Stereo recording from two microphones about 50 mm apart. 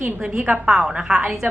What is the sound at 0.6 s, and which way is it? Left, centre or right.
Speech, centre.